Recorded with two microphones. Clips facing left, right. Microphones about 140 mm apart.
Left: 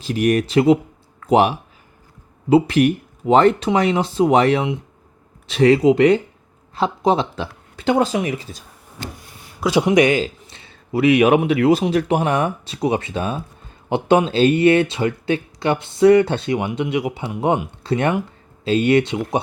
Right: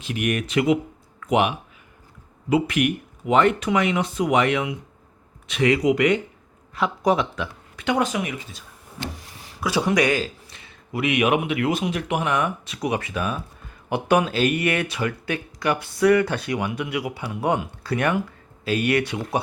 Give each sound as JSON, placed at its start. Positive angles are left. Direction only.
{"t": 0.0, "sound": "speech", "side_deg": 35}
{"t": 9.6, "sound": "a man's voice", "side_deg": 20}